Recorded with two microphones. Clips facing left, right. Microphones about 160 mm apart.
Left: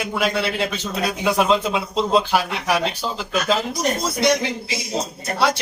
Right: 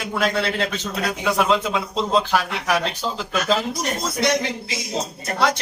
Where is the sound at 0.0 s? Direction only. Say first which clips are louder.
Even; 10° left (ahead or behind).